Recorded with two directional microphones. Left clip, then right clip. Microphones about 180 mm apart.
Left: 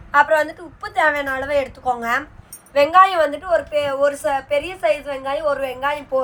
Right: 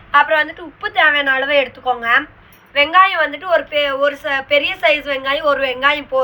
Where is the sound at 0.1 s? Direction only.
35° left (ahead or behind); by 4.3 s 60° left (ahead or behind).